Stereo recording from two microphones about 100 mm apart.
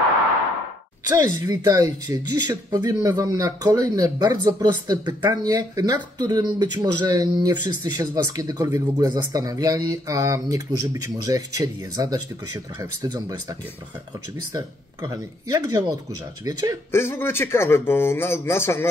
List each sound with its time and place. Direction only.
1.0 s speech: 35° right (ahead or behind)
14.5 s speech: 40° right (ahead or behind)
16.9 s speech: 25° left (ahead or behind)